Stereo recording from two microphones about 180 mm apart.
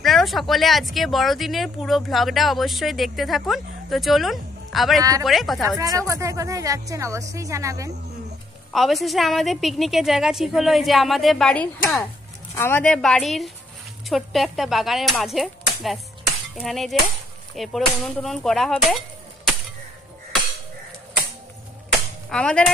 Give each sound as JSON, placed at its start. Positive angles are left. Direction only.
{"t": 0.0, "sound": "speech", "side_deg": 0}
{"t": 5.8, "sound": "a woman's voice", "side_deg": -20}
{"t": 8.7, "sound": "speech", "side_deg": 0}
{"t": 22.3, "sound": "speech", "side_deg": 5}